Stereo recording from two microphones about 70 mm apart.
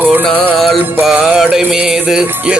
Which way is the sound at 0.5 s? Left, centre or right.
Centre.